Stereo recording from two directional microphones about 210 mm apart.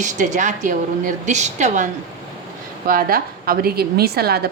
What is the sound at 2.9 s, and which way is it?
A woman's voice, 45° right (ahead or behind).